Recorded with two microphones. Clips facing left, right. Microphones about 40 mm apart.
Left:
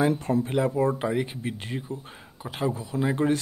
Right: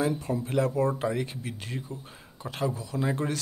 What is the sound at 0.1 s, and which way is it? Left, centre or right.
Speech, left.